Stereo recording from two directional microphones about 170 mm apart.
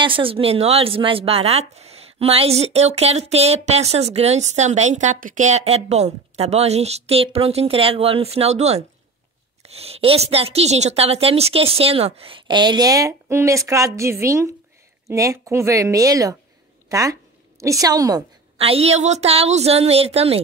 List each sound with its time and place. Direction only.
0.0 s a woman's voice: 30° right (ahead or behind)
18.6 s a woman's voice: 35° right (ahead or behind)